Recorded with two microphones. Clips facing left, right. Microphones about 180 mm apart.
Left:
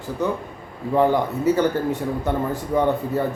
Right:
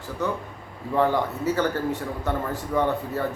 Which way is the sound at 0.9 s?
15° left (ahead or behind).